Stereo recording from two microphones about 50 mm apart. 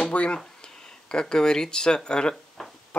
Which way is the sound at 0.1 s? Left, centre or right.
Left.